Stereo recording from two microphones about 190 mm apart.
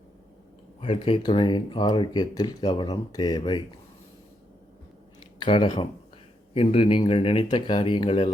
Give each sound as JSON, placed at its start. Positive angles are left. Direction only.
{"t": 0.8, "sound": "speech", "side_deg": 25}
{"t": 5.4, "sound": "speech", "side_deg": 25}